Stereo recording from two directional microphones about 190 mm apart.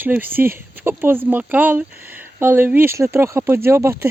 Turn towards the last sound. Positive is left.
turn(degrees=-15)  # may be behind; listen again after turning